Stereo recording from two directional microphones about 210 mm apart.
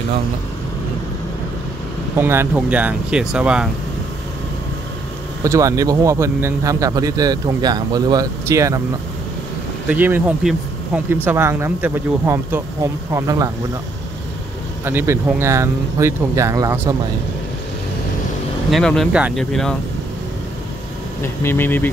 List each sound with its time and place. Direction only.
2.1 s speech: 10° right (ahead or behind)
5.4 s speech: 15° right (ahead or behind)
9.8 s speech: 10° right (ahead or behind)
14.9 s speech: 10° right (ahead or behind)
18.7 s speech: centre (ahead or behind)
21.2 s speech: 10° left (ahead or behind)